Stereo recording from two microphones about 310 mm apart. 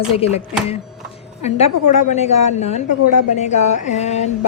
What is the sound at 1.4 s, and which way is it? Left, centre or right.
A woman's voice, centre.